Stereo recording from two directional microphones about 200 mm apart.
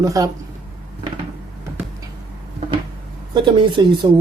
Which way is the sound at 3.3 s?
25° right (ahead or behind).